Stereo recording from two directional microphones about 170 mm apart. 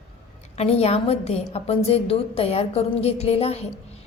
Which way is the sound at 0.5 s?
35° left (ahead or behind).